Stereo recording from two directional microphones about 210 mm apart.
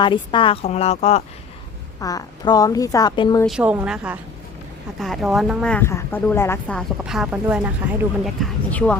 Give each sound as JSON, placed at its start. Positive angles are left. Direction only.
{"t": 0.0, "sound": "speech", "side_deg": 25}
{"t": 2.0, "sound": "a woman's voice", "side_deg": 15}
{"t": 3.4, "sound": "a woman's voice", "side_deg": -5}
{"t": 7.0, "sound": "speech", "side_deg": -5}